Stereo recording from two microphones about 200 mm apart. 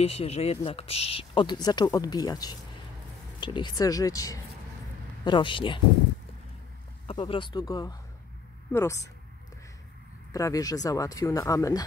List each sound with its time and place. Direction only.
0.0 s speech: 30° left (ahead or behind)
7.1 s speech: 25° left (ahead or behind)
10.3 s speech: 15° left (ahead or behind)